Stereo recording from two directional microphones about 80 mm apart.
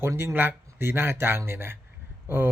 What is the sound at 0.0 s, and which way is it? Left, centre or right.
A man's voice, right.